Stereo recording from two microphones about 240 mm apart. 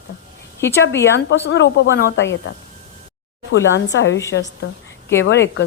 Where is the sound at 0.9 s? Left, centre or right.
Left.